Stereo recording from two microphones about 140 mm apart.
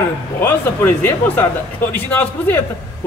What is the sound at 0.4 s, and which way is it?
Speech, 15° left (ahead or behind).